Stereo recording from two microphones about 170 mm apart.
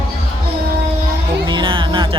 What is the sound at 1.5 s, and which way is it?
Music, 30° right (ahead or behind).